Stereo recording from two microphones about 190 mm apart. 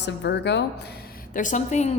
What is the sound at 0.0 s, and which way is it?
Speech, 65° left (ahead or behind).